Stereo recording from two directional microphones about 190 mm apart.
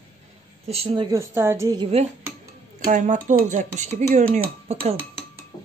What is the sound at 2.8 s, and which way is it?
Speech, 40° right (ahead or behind).